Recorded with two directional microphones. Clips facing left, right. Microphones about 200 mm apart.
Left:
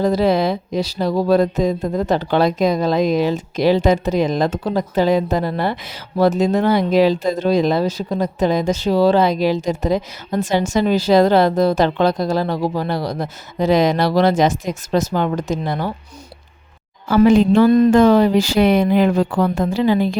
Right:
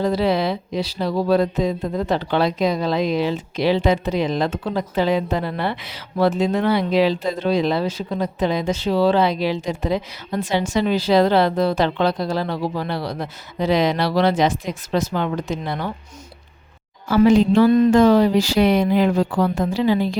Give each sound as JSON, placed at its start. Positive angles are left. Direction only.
{"t": 0.0, "sound": "speech", "side_deg": 45}
{"t": 17.1, "sound": "speech", "side_deg": 55}